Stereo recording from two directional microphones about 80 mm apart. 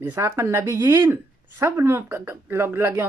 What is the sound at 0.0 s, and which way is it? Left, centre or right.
Speech, right.